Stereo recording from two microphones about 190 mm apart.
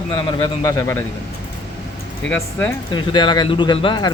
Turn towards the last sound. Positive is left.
turn(degrees=25)  # may be behind; listen again after turning